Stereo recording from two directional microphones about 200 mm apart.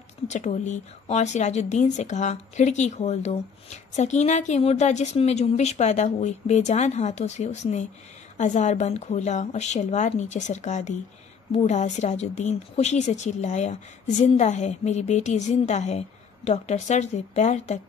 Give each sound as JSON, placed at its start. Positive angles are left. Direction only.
{"t": 0.3, "sound": "a woman's voice", "side_deg": 35}